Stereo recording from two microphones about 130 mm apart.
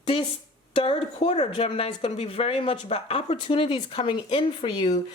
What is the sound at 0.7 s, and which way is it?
A woman's voice, 45° left (ahead or behind).